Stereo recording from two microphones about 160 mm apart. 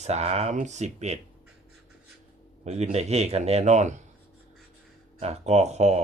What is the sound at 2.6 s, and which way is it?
Speech, 45° right (ahead or behind).